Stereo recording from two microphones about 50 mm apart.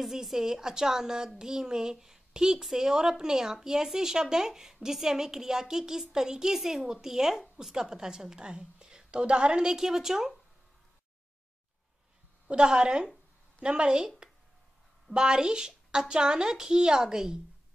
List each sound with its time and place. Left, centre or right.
0.0 s a woman's voice: centre
12.4 s a woman's voice: centre